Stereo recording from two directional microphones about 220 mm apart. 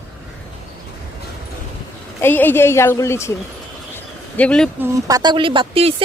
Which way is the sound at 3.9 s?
5° left (ahead or behind).